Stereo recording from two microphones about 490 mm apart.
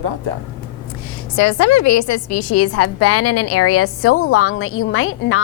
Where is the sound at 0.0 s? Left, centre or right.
Right.